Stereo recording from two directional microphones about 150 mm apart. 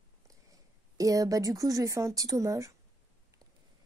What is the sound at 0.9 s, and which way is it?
A woman's voice, 20° right (ahead or behind).